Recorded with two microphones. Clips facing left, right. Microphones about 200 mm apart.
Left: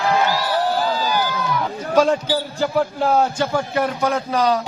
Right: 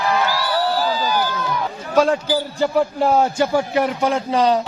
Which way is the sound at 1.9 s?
Centre (ahead or behind).